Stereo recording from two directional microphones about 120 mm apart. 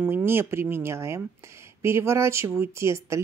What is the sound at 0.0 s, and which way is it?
Speech, 20° right (ahead or behind).